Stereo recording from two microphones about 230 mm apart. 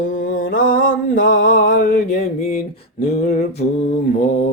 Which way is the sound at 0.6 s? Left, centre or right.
Left.